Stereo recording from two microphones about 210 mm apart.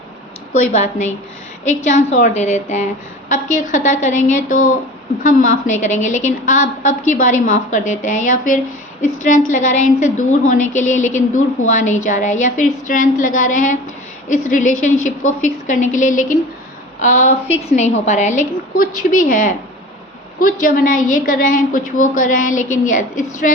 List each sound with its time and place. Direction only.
0.7 s a woman's voice: 35° left (ahead or behind)